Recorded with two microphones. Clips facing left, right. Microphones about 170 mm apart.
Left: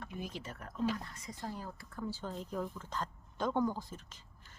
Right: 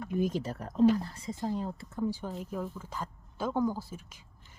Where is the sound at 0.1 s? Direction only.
45° right (ahead or behind).